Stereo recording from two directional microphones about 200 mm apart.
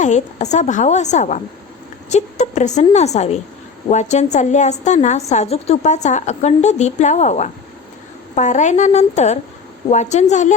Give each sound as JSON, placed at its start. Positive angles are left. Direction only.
{"t": 0.0, "sound": "a woman's voice", "side_deg": 35}